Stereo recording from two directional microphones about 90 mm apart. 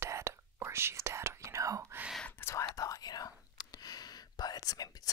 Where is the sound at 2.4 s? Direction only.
35° left (ahead or behind).